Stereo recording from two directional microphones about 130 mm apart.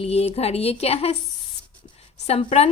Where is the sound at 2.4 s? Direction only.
50° left (ahead or behind).